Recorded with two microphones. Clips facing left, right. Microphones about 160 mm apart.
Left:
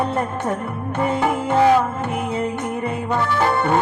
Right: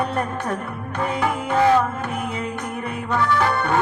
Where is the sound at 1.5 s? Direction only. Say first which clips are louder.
Left 2 dB; 20° left (ahead or behind).